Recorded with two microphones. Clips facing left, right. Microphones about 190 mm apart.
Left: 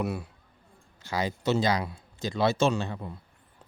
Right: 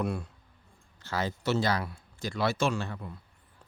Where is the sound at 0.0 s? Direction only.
5° left (ahead or behind).